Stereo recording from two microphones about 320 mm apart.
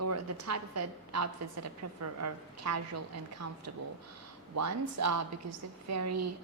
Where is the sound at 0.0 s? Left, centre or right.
Right.